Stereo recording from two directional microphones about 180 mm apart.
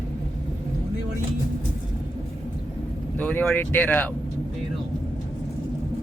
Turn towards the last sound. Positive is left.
turn(degrees=10)  # may be behind; listen again after turning